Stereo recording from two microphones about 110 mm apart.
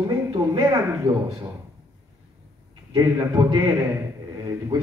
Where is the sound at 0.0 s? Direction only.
35° right (ahead or behind).